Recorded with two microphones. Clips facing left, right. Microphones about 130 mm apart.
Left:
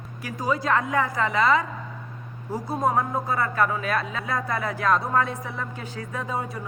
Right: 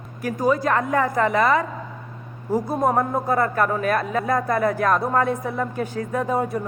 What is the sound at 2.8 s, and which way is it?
A woman's voice, 50° right (ahead or behind).